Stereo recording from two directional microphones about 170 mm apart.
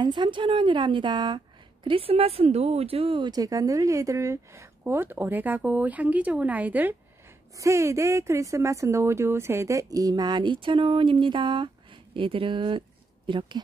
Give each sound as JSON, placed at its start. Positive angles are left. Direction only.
{"t": 0.0, "sound": "a woman's voice", "side_deg": -30}